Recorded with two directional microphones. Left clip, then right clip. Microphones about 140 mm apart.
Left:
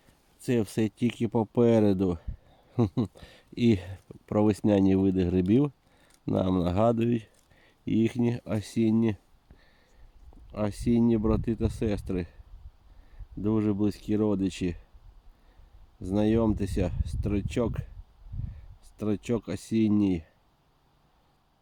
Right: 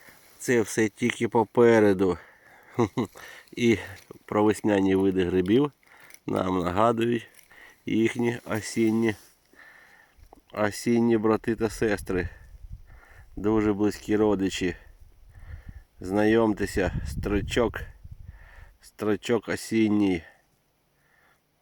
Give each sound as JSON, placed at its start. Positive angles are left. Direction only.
{"t": 0.4, "sound": "speech", "side_deg": 25}
{"t": 10.5, "sound": "speech", "side_deg": 10}
{"t": 13.4, "sound": "speech", "side_deg": 15}
{"t": 16.0, "sound": "speech", "side_deg": 15}